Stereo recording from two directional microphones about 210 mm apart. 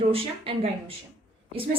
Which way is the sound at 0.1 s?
25° right (ahead or behind).